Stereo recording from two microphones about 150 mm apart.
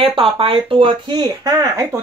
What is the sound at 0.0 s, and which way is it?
Speech, 40° right (ahead or behind).